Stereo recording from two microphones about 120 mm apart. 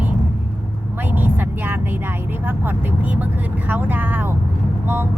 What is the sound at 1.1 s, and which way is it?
Vehicle, 15° right (ahead or behind).